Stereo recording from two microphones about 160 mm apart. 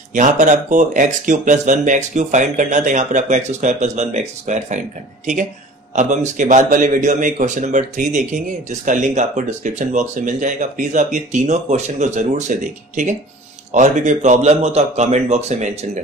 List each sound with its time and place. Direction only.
0.1 s a man's voice: 50° right (ahead or behind)